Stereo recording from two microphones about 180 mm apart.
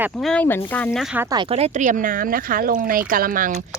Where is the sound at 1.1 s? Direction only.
20° right (ahead or behind); by 3.5 s 50° right (ahead or behind).